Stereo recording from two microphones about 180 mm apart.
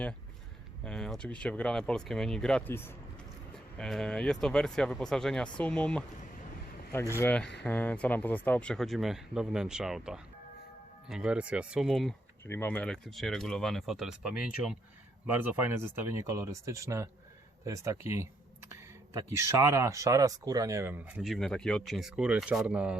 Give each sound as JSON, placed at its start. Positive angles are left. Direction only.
{"t": 0.9, "sound": "speech", "side_deg": 5}
{"t": 7.2, "sound": "speech", "side_deg": 10}
{"t": 12.5, "sound": "speech", "side_deg": 10}
{"t": 19.4, "sound": "speech", "side_deg": -15}
{"t": 21.2, "sound": "speech", "side_deg": 0}